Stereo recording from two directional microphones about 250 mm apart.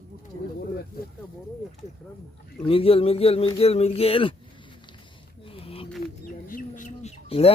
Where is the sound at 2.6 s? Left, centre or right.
Left.